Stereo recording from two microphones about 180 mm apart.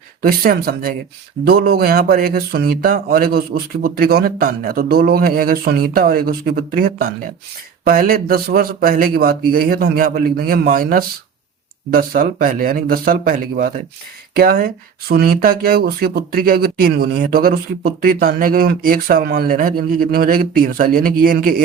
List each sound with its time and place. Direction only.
0.2 s speech: 55° right (ahead or behind)